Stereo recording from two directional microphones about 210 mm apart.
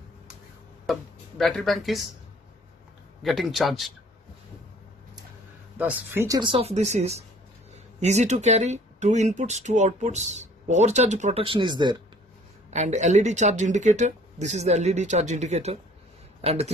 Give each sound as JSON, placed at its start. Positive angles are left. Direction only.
{"t": 1.4, "sound": "speech", "side_deg": 0}
{"t": 3.2, "sound": "speech", "side_deg": 0}
{"t": 5.8, "sound": "speech", "side_deg": -10}
{"t": 12.7, "sound": "speech", "side_deg": -35}